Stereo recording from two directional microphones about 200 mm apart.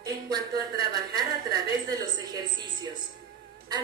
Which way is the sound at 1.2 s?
20° right (ahead or behind).